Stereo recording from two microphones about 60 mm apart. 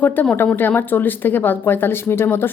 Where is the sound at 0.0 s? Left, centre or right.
Left.